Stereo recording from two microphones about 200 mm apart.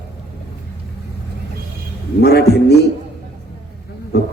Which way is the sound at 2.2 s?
55° left (ahead or behind).